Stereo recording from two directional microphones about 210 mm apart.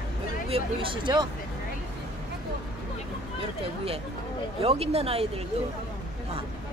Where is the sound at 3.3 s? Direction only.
25° right (ahead or behind).